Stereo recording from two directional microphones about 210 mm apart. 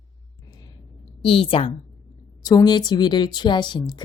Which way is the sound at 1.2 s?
25° left (ahead or behind).